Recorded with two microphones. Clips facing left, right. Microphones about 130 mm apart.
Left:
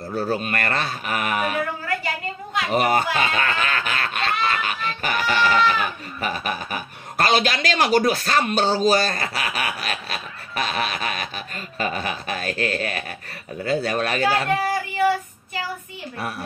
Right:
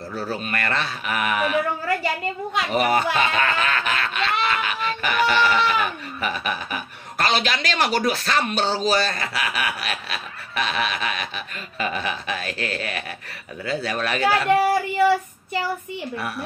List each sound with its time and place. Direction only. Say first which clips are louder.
0.1 s speech: left 4 dB; 50° left (ahead or behind)
2.7 s speech: left 1 dB; 40° left (ahead or behind)